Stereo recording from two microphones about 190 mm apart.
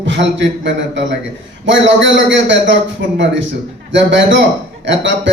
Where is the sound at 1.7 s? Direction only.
70° right (ahead or behind).